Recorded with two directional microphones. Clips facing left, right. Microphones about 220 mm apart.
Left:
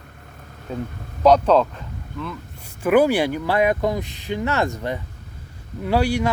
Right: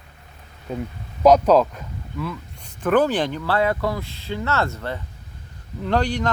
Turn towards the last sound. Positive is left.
turn(degrees=10)  # may be behind; listen again after turning